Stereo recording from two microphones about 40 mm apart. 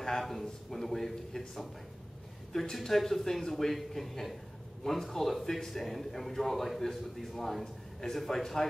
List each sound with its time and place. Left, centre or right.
0.0 s a man's voice: centre